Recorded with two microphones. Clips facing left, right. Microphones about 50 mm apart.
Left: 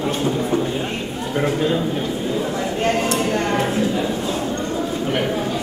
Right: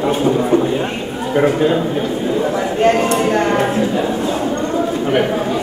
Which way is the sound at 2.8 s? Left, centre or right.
Centre.